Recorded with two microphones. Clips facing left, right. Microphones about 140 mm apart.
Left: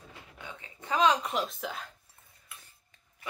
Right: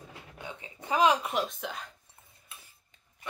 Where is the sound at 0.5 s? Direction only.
15° right (ahead or behind); by 1.9 s centre (ahead or behind).